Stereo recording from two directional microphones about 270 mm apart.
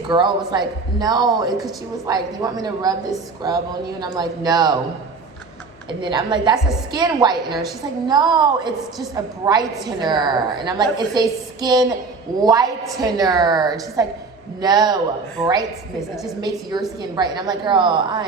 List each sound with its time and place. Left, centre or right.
0.1 s a woman's voice: centre
5.9 s a woman's voice: centre
17.0 s a woman's voice: centre